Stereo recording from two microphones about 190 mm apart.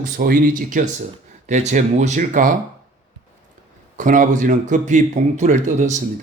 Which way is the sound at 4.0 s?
45° right (ahead or behind).